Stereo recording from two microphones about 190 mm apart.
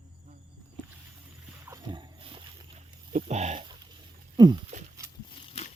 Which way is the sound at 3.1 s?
35° right (ahead or behind).